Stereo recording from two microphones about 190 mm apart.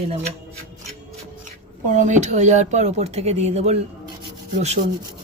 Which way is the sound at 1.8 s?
40° right (ahead or behind).